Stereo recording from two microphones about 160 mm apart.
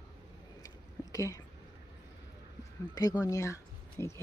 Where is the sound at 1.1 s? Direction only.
20° left (ahead or behind).